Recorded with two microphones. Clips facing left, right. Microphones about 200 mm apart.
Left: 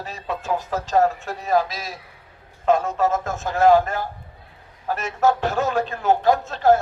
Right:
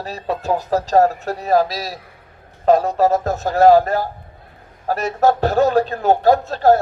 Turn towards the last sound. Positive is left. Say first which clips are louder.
# right 3 dB
turn(degrees=-40)  # may be behind; listen again after turning